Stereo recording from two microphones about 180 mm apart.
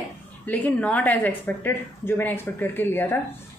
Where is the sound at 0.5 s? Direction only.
10° left (ahead or behind).